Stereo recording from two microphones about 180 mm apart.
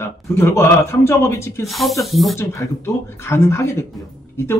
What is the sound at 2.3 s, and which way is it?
A man's voice, 15° left (ahead or behind).